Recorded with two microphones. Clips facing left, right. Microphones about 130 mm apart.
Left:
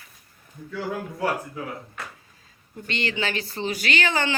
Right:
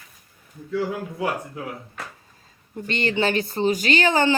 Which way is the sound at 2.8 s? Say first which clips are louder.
Right 5 dB; 45° right (ahead or behind).